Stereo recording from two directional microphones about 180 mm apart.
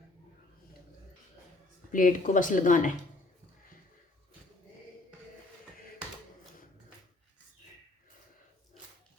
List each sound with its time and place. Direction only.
1.9 s speech: 45° left (ahead or behind)